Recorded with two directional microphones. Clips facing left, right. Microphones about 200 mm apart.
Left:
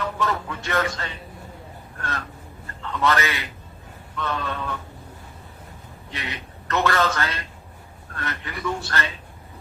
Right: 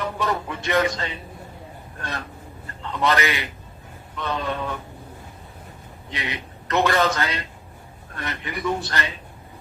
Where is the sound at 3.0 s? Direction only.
15° right (ahead or behind).